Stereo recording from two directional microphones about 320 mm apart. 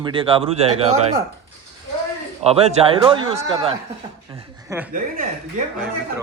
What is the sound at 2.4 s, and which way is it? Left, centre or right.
A man's voice, centre.